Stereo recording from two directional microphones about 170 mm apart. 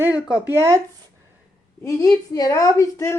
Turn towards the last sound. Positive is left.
turn(degrees=20)  # may be behind; listen again after turning